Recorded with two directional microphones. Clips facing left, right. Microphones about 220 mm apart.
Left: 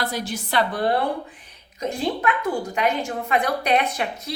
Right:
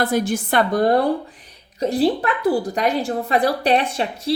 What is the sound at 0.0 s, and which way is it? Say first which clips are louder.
A woman's voice: right 8 dB; 50° right (ahead or behind).